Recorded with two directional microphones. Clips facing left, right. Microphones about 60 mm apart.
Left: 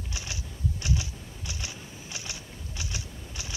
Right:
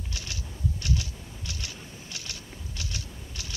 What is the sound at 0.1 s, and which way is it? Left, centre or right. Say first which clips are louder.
Typing: left 1 dB; centre.